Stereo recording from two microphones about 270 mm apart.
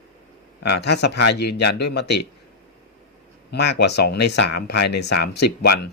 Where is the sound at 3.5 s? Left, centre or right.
Left.